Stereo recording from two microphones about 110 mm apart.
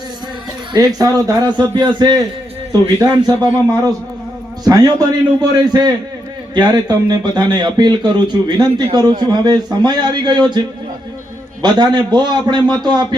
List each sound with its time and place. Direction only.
0.7 s a man's voice: 35° right (ahead or behind)
4.6 s speech: 35° right (ahead or behind)
11.6 s speech: 40° right (ahead or behind)